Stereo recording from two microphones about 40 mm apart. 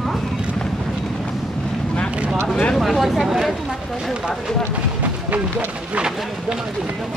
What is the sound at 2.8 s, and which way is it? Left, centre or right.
Speech, centre.